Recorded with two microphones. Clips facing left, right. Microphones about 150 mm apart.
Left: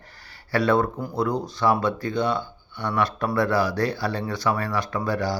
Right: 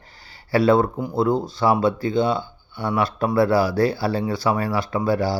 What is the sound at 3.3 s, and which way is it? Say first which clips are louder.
Speech: right 5 dB; 30° right (ahead or behind).